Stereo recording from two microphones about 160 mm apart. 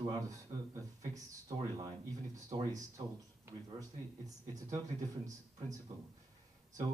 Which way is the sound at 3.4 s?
20° right (ahead or behind).